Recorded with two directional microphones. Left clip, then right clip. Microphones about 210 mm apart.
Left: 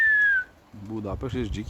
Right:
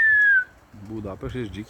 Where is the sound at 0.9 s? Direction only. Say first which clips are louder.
Left 1 dB; 15° left (ahead or behind).